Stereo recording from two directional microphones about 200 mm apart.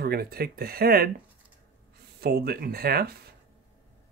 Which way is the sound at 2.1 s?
50° right (ahead or behind).